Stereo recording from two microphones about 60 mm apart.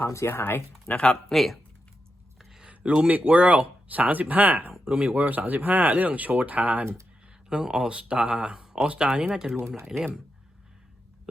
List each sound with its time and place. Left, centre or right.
0.0 s speech: left
0.3 s speech: left
0.9 s speech: centre
1.3 s speech: centre
2.4 s a sound: centre
2.6 s speech: centre
7.5 s speech: centre
9.6 s speech: right